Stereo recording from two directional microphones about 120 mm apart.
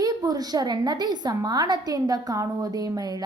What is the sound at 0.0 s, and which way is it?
A woman's voice, 30° right (ahead or behind).